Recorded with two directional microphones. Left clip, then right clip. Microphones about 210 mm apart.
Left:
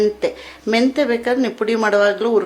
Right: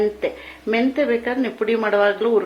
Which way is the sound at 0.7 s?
30° left (ahead or behind).